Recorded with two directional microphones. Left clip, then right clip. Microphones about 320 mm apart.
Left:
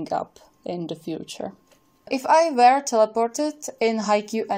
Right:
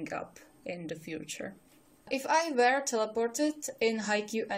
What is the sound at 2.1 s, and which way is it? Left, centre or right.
Speech, centre.